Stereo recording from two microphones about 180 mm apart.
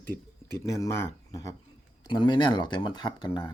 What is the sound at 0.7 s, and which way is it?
Speech, 15° left (ahead or behind).